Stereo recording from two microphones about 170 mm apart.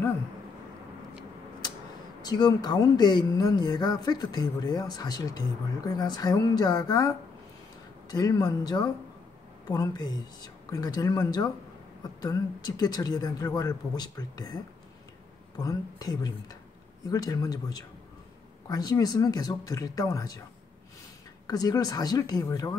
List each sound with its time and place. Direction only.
2.2 s speech: 25° left (ahead or behind)
21.5 s speech: 20° left (ahead or behind)